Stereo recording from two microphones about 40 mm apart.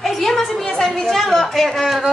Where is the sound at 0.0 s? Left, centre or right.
Centre.